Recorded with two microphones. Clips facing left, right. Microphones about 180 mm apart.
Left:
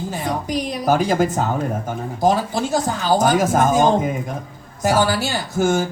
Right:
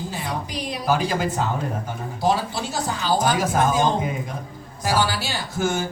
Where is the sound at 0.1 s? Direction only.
45° left (ahead or behind).